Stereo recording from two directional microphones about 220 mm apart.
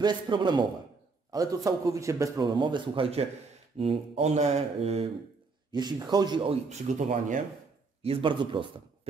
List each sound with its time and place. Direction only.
0.0 s a man's voice: 20° right (ahead or behind)